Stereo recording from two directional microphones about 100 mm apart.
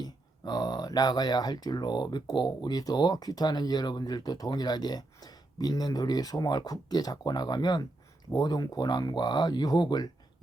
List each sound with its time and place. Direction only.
0.0 s speech: 45° left (ahead or behind)